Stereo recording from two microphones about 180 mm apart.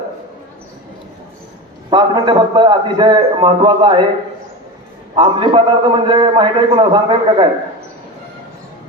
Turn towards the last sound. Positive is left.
turn(degrees=-30)  # may be behind; listen again after turning